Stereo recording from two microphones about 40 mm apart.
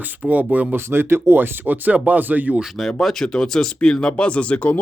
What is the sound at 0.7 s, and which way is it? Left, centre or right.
Speech, right.